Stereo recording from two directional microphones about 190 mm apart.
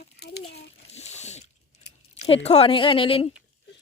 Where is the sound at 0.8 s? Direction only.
35° left (ahead or behind).